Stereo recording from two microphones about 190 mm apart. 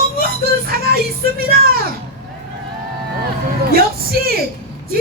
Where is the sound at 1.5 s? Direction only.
55° right (ahead or behind).